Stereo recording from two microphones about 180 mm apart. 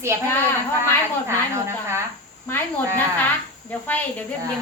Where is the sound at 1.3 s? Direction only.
15° right (ahead or behind).